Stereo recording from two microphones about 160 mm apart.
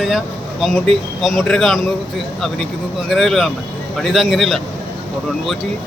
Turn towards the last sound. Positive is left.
turn(degrees=0)  # may be behind; listen again after turning